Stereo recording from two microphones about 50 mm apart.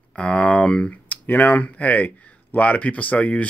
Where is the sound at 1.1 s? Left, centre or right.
Left.